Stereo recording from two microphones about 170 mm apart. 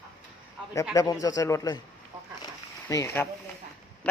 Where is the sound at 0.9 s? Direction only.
20° left (ahead or behind).